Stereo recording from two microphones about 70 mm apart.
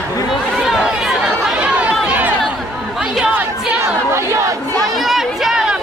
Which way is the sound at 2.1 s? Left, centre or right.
Right.